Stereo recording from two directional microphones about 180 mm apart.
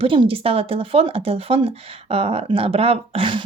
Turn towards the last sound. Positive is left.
turn(degrees=-30)  # may be behind; listen again after turning